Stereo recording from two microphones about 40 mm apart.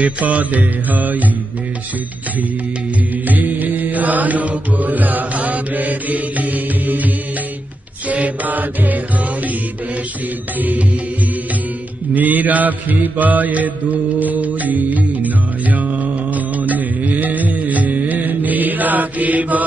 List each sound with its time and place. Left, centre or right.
0.0 s music: right
3.3 s mantra: right
8.1 s mantra: right
12.1 s mantra: right